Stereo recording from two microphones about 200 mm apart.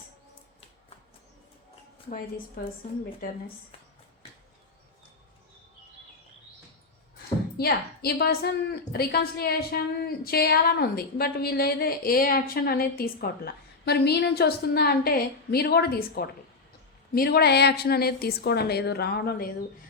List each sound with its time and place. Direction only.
7.5 s a woman's voice: 50° left (ahead or behind)